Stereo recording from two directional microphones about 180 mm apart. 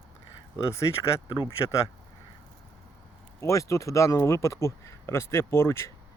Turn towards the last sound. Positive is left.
turn(degrees=15)  # may be behind; listen again after turning